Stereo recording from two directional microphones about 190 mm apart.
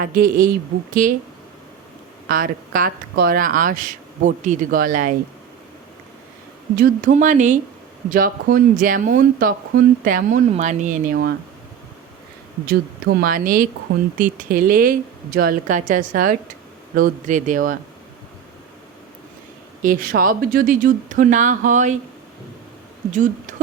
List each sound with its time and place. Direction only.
0.0 s speech: 50° right (ahead or behind)
2.2 s speech: 50° right (ahead or behind)
6.7 s speech: 45° right (ahead or behind)
12.6 s speech: 55° right (ahead or behind)
19.8 s speech: 45° right (ahead or behind)
23.1 s speech: 40° right (ahead or behind)